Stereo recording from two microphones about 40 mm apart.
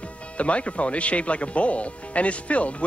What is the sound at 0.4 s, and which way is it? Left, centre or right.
Speech, left.